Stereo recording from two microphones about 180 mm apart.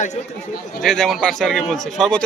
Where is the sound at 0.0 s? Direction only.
40° left (ahead or behind).